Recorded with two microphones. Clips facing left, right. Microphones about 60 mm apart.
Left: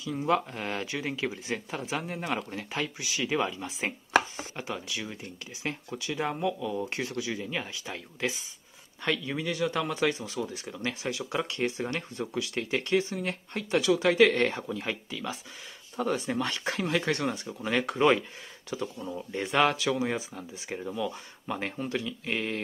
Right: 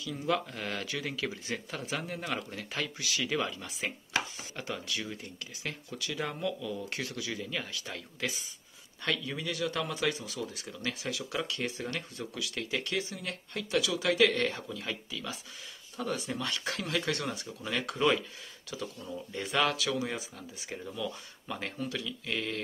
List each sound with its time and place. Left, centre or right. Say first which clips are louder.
0.2 s speech: left 4 dB; left